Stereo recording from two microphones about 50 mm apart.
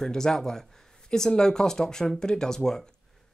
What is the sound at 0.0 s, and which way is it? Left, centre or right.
Speech, centre.